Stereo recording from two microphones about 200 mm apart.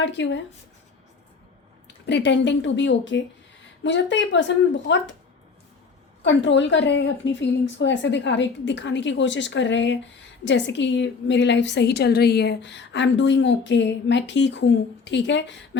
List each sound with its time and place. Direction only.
0.0 s a woman's voice: 65° left (ahead or behind)
2.0 s a woman's voice: 60° left (ahead or behind)
6.2 s a woman's voice: 65° left (ahead or behind)